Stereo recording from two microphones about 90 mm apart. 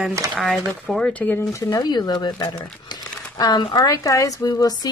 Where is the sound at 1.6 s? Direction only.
50° left (ahead or behind).